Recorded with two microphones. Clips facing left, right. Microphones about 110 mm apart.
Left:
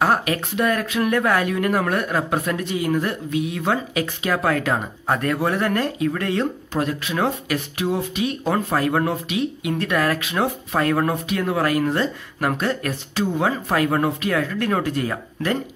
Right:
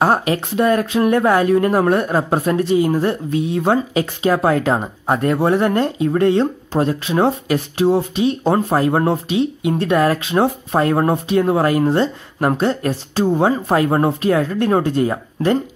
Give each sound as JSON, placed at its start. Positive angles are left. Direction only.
{"t": 0.0, "sound": "speech", "side_deg": -30}